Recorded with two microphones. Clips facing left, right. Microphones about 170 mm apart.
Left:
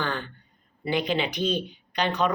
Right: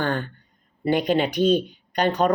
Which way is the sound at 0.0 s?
45° right (ahead or behind).